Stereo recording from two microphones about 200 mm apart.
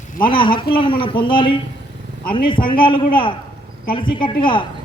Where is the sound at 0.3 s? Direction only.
25° left (ahead or behind).